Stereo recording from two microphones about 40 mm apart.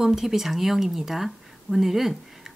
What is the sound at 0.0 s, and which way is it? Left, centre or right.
Speech, centre.